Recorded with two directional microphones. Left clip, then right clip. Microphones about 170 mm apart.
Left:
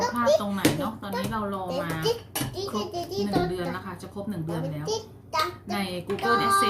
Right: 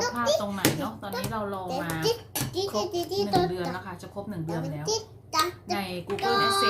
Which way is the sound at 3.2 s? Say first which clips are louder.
Right 1 dB; 10° left (ahead or behind).